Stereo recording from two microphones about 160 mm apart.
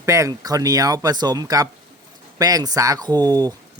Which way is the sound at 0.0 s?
20° right (ahead or behind).